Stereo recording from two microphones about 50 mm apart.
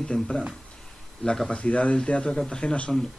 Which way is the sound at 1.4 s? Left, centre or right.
Left.